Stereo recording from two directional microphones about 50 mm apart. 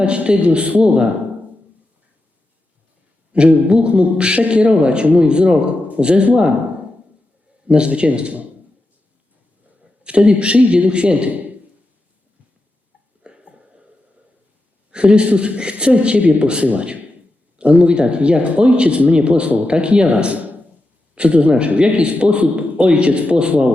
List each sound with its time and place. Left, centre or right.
0.0 s speech: right
3.3 s speech: right
7.7 s speech: right
10.0 s speech: right
13.2 s a sound: centre
14.8 s speech: right